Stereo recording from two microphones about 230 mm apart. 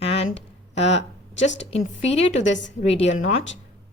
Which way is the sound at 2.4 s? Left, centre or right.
Left.